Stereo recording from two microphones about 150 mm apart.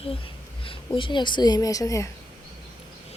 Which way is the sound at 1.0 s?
30° left (ahead or behind).